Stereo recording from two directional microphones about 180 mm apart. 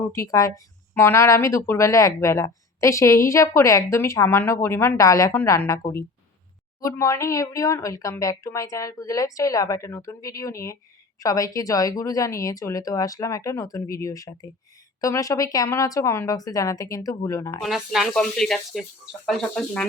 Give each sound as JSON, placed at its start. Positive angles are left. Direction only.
{"t": 0.1, "sound": "a woman's voice", "side_deg": 15}
{"t": 17.6, "sound": "speech", "side_deg": 0}